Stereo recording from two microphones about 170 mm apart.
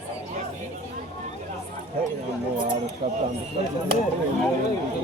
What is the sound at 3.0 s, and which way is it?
Speech, 35° right (ahead or behind).